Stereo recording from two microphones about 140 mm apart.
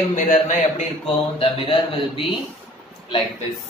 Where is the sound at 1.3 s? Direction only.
40° left (ahead or behind).